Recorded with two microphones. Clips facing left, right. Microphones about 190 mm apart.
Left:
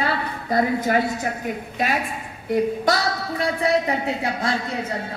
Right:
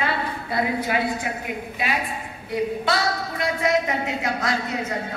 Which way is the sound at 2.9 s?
35° left (ahead or behind).